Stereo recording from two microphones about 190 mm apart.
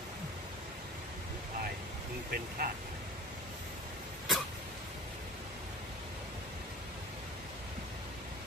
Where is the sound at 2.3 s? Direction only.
50° right (ahead or behind).